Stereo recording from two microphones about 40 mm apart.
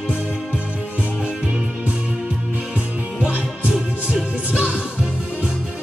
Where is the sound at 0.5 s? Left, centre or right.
Right.